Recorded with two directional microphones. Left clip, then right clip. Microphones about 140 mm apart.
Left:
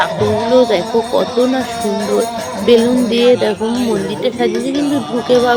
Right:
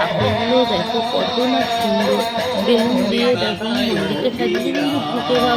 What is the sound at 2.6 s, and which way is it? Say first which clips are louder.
Music: left 8 dB; 55° left (ahead or behind).